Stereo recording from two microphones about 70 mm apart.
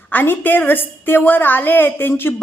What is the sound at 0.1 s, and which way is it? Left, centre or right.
A woman's voice, left.